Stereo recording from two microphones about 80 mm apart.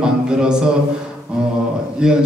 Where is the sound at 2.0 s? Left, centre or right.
Centre.